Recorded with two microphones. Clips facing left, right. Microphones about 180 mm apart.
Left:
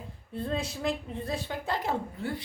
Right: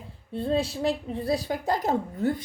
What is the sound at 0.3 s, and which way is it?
A woman's voice, 30° right (ahead or behind).